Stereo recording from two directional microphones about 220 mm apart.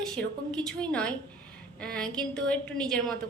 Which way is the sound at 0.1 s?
5° left (ahead or behind).